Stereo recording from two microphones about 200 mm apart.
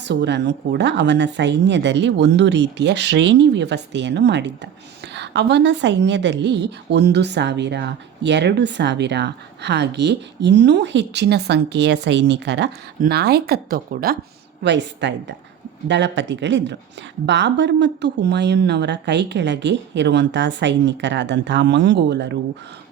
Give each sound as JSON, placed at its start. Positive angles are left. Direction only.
{"t": 0.0, "sound": "a woman's voice", "side_deg": -60}
{"t": 14.6, "sound": "a woman's voice", "side_deg": -60}